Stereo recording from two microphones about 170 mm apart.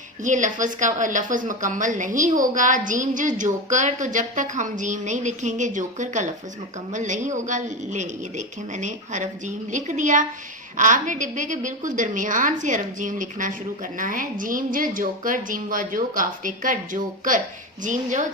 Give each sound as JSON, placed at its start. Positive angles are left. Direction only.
{"t": 0.3, "sound": "a woman's voice", "side_deg": -45}